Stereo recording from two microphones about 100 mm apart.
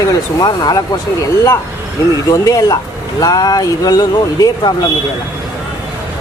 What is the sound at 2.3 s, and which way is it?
Speech, 35° left (ahead or behind).